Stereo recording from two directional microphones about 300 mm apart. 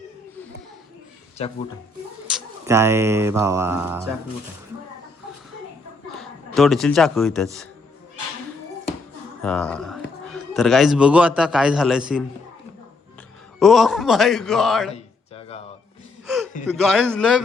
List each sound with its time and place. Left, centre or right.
1.4 s speech: centre
2.3 s speech: centre
6.1 s a man's voice: centre
9.4 s speech: centre
13.6 s a man's voice: centre
14.9 s a sound: centre
16.2 s gasp: centre
16.9 s a man's voice: centre